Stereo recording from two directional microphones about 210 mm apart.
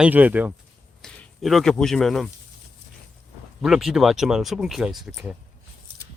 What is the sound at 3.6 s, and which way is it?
Speech, centre (ahead or behind).